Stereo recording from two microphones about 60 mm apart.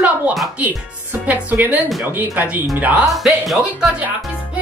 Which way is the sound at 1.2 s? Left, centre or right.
Right.